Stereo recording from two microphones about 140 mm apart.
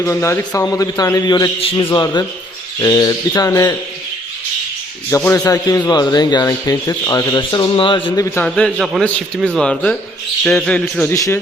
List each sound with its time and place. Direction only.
0.0 s a man's voice: 20° left (ahead or behind)
5.1 s a man's voice: 20° left (ahead or behind); by 8.1 s 40° left (ahead or behind)
8.1 s a man's voice: 20° left (ahead or behind)
8.4 s a man's voice: 5° left (ahead or behind)
8.8 s speech: 5° right (ahead or behind)
9.0 s a man's voice: 10° left (ahead or behind)
11.1 s a man's voice: 20° left (ahead or behind)